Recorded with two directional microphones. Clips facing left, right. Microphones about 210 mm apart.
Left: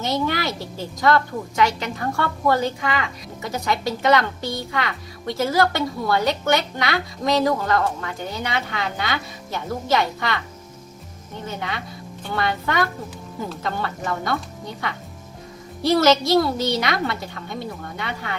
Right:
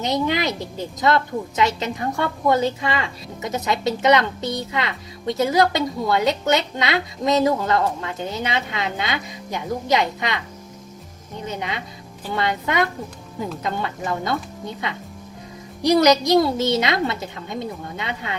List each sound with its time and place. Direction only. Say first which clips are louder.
0.0 s a woman's voice: right 2 dB; 20° right (ahead or behind)
11.4 s a woman's voice: right 1 dB; 20° right (ahead or behind)